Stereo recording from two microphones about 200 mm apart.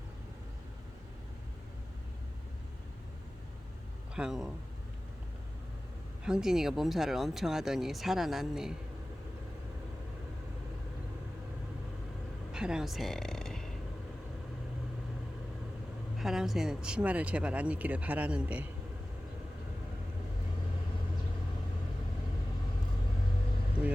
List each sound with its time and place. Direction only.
4.1 s speech: 5° right (ahead or behind)
6.2 s speech: 5° right (ahead or behind)
12.5 s speech: 5° right (ahead or behind)
16.1 s speech: centre (ahead or behind)